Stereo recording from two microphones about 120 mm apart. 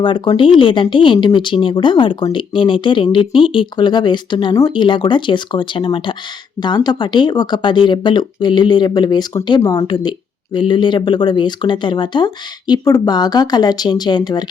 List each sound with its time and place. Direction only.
0.0 s speech: 45° left (ahead or behind)